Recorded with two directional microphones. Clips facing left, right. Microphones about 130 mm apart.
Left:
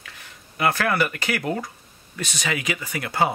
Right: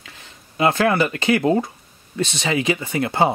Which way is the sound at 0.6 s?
25° right (ahead or behind).